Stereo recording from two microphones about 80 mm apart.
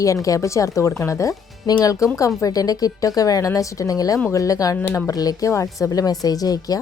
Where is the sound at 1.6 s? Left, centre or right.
Left.